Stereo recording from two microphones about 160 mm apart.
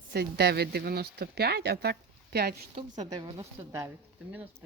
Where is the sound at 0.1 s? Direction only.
80° right.